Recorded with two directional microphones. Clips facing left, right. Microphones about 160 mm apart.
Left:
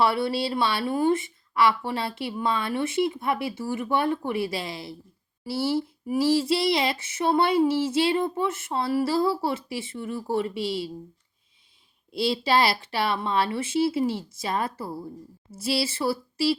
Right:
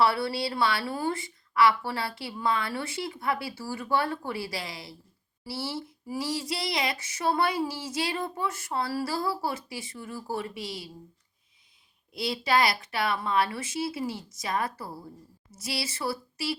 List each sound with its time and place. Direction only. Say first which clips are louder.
0.0 s child singing: left 2 dB; 25° left (ahead or behind)
12.1 s child singing: left 3 dB; 30° left (ahead or behind)